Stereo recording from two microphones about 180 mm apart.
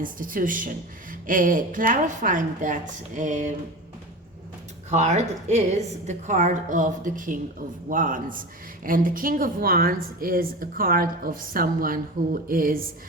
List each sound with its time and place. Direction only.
0.0 s speech: 50° right (ahead or behind)
4.9 s speech: 40° right (ahead or behind)